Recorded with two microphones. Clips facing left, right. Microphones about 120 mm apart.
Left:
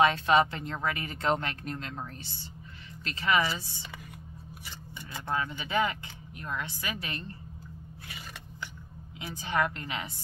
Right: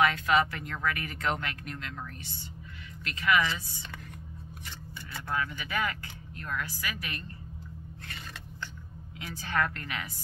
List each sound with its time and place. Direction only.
0.0 s speech: 25° left (ahead or behind)
5.3 s speech: 25° left (ahead or behind)
9.2 s speech: 20° left (ahead or behind)